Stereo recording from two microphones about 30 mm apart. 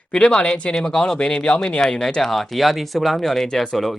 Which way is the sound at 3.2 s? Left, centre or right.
Centre.